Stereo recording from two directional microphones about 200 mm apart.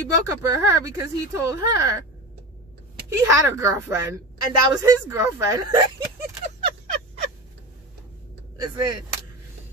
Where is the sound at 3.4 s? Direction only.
15° right (ahead or behind).